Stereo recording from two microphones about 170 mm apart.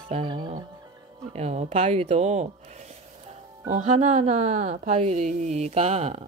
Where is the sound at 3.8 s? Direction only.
40° right (ahead or behind).